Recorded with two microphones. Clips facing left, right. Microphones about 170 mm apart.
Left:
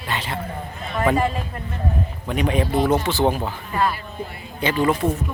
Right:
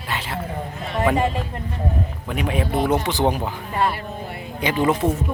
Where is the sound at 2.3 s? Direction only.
5° right (ahead or behind).